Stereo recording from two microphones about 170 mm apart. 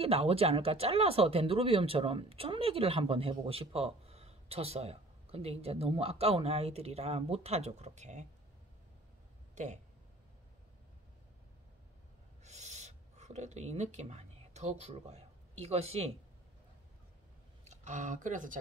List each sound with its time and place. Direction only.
0.0 s speech: 35° right (ahead or behind)
12.4 s owl: 40° right (ahead or behind)
17.6 s speech: 45° right (ahead or behind)